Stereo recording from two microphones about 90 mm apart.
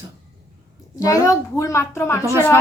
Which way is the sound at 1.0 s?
40° left (ahead or behind).